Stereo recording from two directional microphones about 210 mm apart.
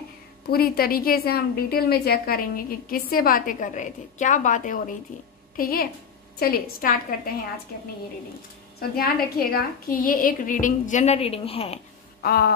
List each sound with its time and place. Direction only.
0.5 s a woman's voice: 45° left (ahead or behind)
8.7 s a woman's voice: 45° left (ahead or behind); by 11.8 s 30° left (ahead or behind)
12.2 s a woman's voice: 45° left (ahead or behind)